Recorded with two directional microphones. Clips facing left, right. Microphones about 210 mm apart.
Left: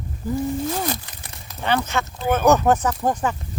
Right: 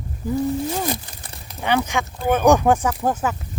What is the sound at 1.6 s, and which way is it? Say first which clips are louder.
Speech: right 1 dB; 15° right (ahead or behind).